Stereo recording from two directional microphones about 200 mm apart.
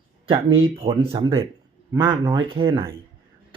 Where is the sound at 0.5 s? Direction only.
30° right (ahead or behind).